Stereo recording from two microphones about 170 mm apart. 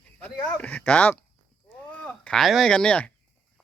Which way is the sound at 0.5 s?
10° left (ahead or behind).